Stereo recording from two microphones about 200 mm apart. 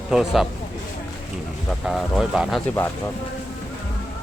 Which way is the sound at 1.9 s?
Centre (ahead or behind).